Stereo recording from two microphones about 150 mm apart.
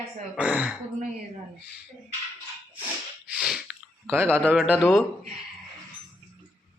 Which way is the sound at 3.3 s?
5° right (ahead or behind).